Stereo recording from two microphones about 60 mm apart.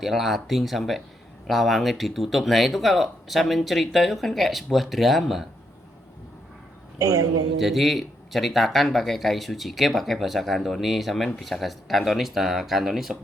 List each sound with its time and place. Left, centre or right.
0.0 s speech: centre
7.0 s a man's voice: right
7.6 s speech: centre